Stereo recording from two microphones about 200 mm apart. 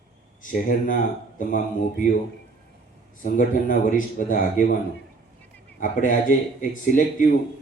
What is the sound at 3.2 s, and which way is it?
Speech, 45° left (ahead or behind).